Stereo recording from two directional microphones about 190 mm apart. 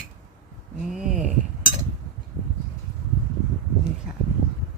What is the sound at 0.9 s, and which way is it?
Speech, 5° right (ahead or behind).